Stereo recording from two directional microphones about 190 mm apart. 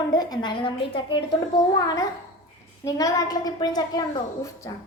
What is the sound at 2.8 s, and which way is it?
A woman's voice, 20° left (ahead or behind).